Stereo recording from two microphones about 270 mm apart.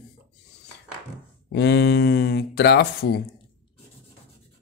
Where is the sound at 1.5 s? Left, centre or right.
Left.